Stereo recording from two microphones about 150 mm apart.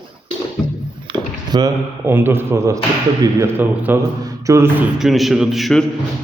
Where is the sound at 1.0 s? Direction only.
30° right (ahead or behind).